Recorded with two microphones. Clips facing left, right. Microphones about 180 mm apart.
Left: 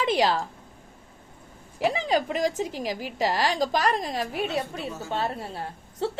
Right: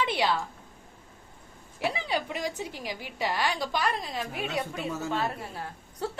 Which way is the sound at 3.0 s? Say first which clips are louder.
Left 4 dB; 40° left (ahead or behind).